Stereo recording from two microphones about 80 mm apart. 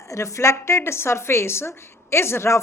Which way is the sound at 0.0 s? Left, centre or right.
Left.